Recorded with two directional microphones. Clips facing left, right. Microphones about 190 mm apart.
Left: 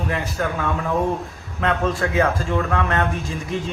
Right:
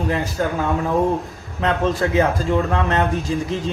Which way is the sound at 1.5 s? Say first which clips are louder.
Right 2 dB; 30° right (ahead or behind).